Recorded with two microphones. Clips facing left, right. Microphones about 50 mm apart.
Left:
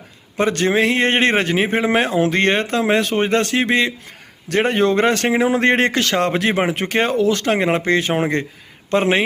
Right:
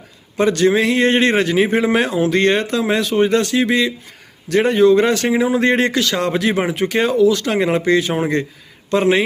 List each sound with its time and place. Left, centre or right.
0.3 s a man's voice: left